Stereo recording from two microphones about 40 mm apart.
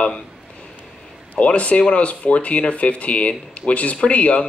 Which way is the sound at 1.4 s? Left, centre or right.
Left.